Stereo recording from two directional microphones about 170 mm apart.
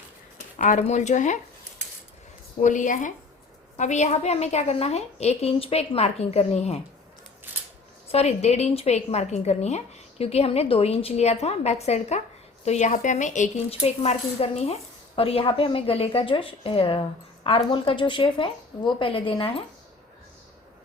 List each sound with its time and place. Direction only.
0.6 s speech: 45° left (ahead or behind)
2.6 s a woman's voice: 45° left (ahead or behind)
8.0 s a woman's voice: 40° left (ahead or behind)